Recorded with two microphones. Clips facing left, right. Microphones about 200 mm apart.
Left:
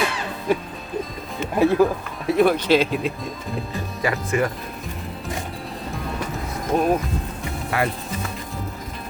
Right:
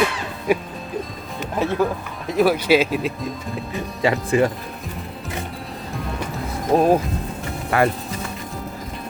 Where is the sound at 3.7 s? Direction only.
25° right (ahead or behind).